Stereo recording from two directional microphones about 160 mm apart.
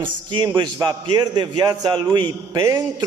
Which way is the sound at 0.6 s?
25° right (ahead or behind).